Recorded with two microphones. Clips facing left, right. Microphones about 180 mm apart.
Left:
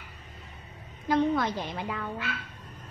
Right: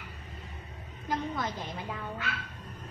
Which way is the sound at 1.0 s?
70° left (ahead or behind).